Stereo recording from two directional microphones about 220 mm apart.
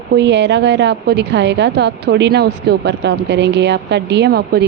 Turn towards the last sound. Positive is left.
turn(degrees=-45)  # may be behind; listen again after turning